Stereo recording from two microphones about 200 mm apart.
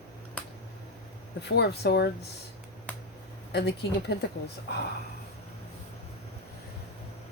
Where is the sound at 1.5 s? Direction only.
55° left (ahead or behind).